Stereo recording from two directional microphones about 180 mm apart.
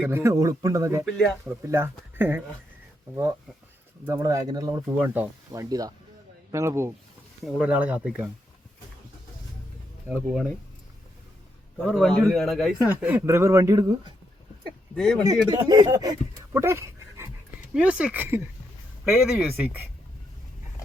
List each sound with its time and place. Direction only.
0.1 s speech: 15° right (ahead or behind)
1.0 s speech: centre (ahead or behind)
1.5 s speech: 15° right (ahead or behind)
4.0 s speech: 15° right (ahead or behind)
10.1 s speech: 5° right (ahead or behind)
11.9 s speech: centre (ahead or behind); by 14.1 s 20° right (ahead or behind)
14.9 s speech: centre (ahead or behind)
15.4 s speech: 20° right (ahead or behind)